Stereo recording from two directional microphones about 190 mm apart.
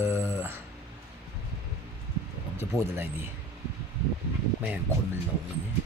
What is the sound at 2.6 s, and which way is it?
Speech, 15° right (ahead or behind).